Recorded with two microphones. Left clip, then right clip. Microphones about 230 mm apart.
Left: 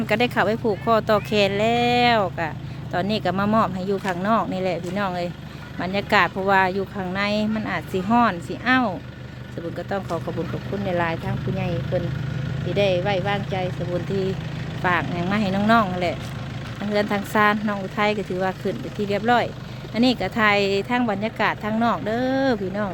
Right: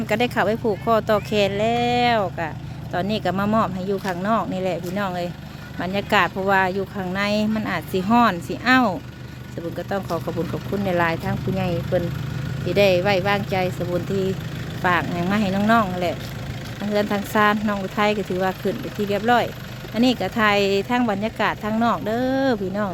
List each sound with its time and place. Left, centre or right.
0.1 s speech: centre